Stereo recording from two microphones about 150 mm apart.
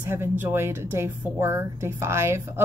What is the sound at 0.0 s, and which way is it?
A woman's voice, 15° right (ahead or behind).